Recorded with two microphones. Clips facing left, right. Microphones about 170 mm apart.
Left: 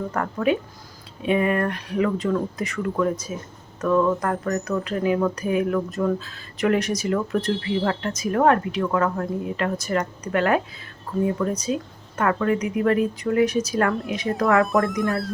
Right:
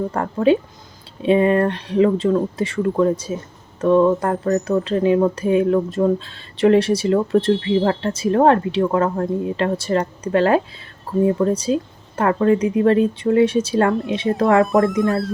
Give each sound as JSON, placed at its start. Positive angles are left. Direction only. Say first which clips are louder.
{"t": 0.1, "sound": "speech", "louder": "right 5 dB", "side_deg": -30}